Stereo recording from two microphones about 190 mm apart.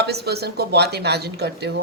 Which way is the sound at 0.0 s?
60° right (ahead or behind).